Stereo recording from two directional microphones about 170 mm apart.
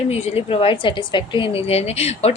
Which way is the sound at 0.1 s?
40° left (ahead or behind).